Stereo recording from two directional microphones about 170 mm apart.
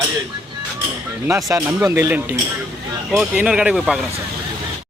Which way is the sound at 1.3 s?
20° right (ahead or behind).